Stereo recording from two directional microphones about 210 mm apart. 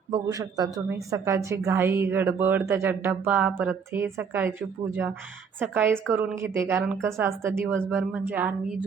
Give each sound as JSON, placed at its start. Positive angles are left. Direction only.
{"t": 0.1, "sound": "a woman's voice", "side_deg": -15}